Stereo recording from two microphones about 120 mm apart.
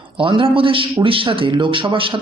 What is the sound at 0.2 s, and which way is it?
A man's voice, 45° right (ahead or behind).